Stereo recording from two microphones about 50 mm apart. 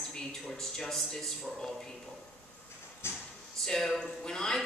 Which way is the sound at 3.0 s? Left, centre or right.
Left.